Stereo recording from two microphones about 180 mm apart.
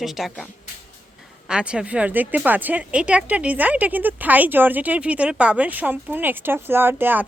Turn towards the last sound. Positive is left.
turn(degrees=-10)  # may be behind; listen again after turning